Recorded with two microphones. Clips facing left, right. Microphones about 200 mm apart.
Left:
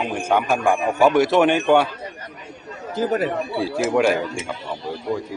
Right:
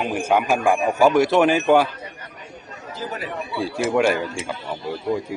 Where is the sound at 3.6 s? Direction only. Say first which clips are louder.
Even; centre (ahead or behind).